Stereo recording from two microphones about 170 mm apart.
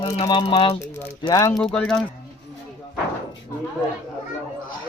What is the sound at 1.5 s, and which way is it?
Speech, 5° left (ahead or behind).